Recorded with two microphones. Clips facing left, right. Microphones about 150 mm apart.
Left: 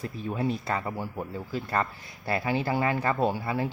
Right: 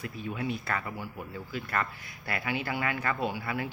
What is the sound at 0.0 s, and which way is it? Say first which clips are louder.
Speech: left 5 dB; 35° left (ahead or behind).